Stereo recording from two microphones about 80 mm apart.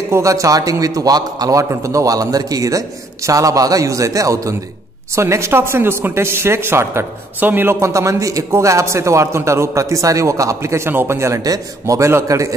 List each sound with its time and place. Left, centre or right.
0.1 s a man's voice: right